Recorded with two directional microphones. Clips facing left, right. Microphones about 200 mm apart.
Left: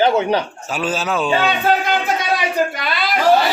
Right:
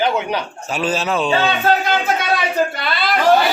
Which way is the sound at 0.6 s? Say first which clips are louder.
Right 4 dB; centre (ahead or behind).